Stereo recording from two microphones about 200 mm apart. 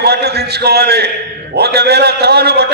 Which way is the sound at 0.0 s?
55° right (ahead or behind).